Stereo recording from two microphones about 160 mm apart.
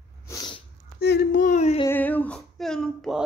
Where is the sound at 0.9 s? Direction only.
80° left.